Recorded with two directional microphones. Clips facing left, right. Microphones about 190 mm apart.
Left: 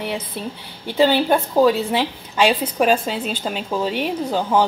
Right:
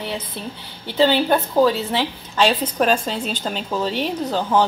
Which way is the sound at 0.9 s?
10° left (ahead or behind).